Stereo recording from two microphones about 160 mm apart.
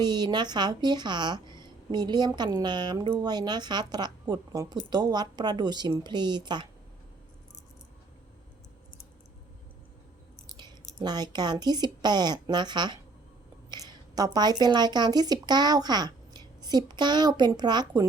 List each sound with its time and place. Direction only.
0.0 s speech: 25° right (ahead or behind)
11.0 s speech: 25° right (ahead or behind)
14.3 s speech: 25° right (ahead or behind)